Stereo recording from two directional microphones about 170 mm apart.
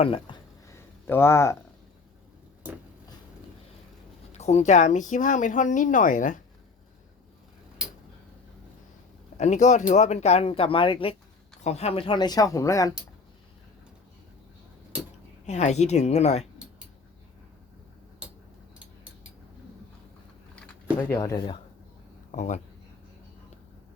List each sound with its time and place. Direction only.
0.0 s speech: 30° left (ahead or behind)
0.7 s a sound: 15° left (ahead or behind)
4.4 s speech: 40° left (ahead or behind)
9.4 s speech: 45° left (ahead or behind); by 12.9 s 20° left (ahead or behind)
15.4 s speech: 40° left (ahead or behind)
21.1 s speech: 20° left (ahead or behind)
22.3 s speech: 45° left (ahead or behind)